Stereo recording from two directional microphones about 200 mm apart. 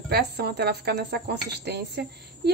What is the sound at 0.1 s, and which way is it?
Speech, 55° right (ahead or behind).